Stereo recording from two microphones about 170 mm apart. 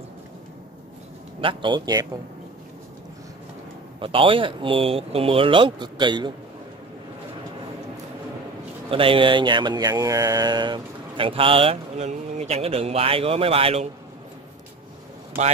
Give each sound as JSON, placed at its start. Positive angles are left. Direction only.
{"t": 1.4, "sound": "a man's voice", "side_deg": -30}
{"t": 4.0, "sound": "speech", "side_deg": -30}
{"t": 8.9, "sound": "speech", "side_deg": -30}